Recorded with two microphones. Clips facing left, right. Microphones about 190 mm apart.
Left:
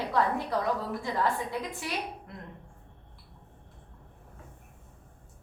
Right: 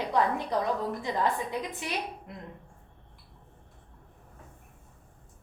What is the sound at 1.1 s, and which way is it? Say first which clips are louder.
Speech: even; 20° right (ahead or behind).